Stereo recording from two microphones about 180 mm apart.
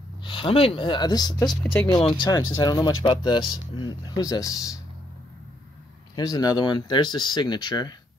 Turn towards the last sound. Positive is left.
turn(degrees=25)  # may be behind; listen again after turning